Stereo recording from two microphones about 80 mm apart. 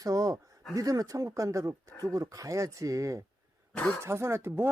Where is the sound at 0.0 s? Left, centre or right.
Right.